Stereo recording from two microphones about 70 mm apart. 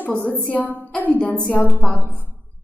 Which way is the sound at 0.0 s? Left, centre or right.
Left.